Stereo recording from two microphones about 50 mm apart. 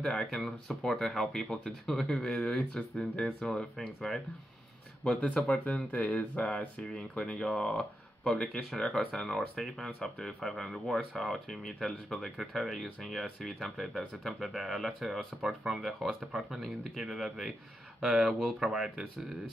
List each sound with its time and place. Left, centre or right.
0.0 s speech: centre
5.2 s speech: left; by 19.3 s centre